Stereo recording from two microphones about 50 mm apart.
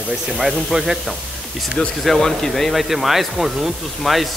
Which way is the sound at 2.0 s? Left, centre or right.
Centre.